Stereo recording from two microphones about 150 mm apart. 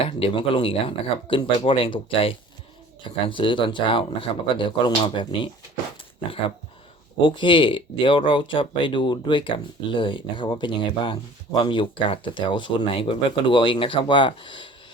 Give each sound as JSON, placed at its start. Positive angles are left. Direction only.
{"t": 0.0, "sound": "speech", "side_deg": 40}
{"t": 7.2, "sound": "speech", "side_deg": 35}